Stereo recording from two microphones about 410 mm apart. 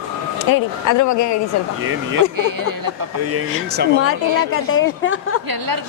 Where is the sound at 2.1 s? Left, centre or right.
Right.